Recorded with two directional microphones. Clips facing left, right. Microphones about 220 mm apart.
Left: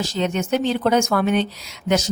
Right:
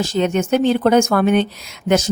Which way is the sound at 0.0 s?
50° right (ahead or behind).